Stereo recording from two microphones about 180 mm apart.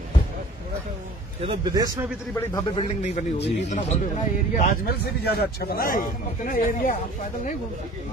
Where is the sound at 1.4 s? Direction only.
25° right (ahead or behind).